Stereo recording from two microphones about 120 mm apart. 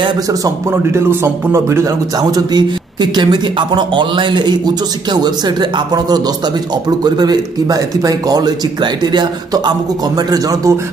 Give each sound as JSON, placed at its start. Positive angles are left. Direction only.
{"t": 0.3, "sound": "a man's voice", "side_deg": -25}
{"t": 2.1, "sound": "speech", "side_deg": -35}